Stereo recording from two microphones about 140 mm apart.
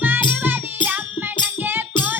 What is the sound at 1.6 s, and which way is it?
Music, 15° right (ahead or behind).